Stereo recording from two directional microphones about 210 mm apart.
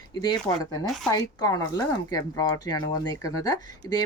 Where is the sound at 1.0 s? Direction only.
20° left (ahead or behind).